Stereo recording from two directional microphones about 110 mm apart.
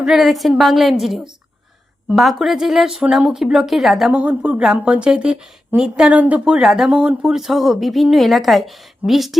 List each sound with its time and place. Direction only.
0.0 s a woman's voice: centre (ahead or behind)
4.2 s a woman's voice: 10° right (ahead or behind)